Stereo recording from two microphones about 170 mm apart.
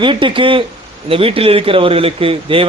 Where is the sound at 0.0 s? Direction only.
30° right (ahead or behind).